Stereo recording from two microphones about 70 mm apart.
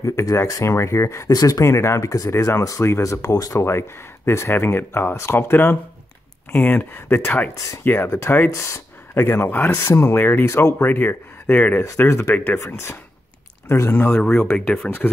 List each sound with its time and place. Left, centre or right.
0.0 s speech: left
1.3 s speech: left
1.7 s speech: left
3.6 s speech: left; by 7.5 s centre
7.5 s speech: left
7.8 s speech: left
8.5 s speech: left
9.1 s speech: left
12.0 s speech: left
12.3 s speech: left
12.5 s speech: left